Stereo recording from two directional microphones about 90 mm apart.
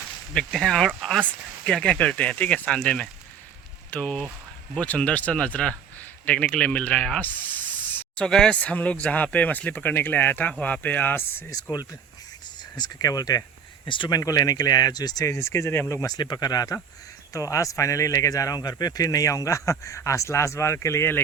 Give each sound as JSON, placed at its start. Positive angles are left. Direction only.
{"t": 0.3, "sound": "a man's voice", "side_deg": 5}
{"t": 11.5, "sound": "speech", "side_deg": 50}
{"t": 13.8, "sound": "speech", "side_deg": 65}
{"t": 14.1, "sound": "speech", "side_deg": 40}
{"t": 16.1, "sound": "speech", "side_deg": 50}